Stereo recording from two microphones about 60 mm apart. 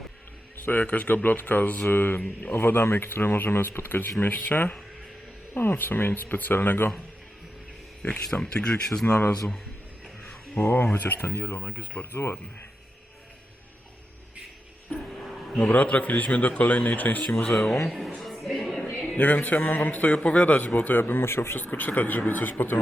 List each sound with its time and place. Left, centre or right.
0.6 s a man's voice: left
8.0 s speech: centre
9.0 s speech: left
10.9 s a man's voice: left
11.3 s speech: left
12.1 s speech: left
15.2 s a sound: centre
15.5 s a man's voice: left
17.4 s speech: centre
18.2 s a sound: centre
19.1 s a man's voice: left